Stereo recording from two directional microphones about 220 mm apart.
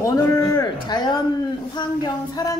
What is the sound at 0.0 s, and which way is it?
A woman's voice, 15° left (ahead or behind).